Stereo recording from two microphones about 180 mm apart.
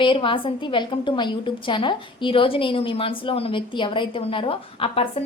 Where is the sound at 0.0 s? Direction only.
30° left (ahead or behind).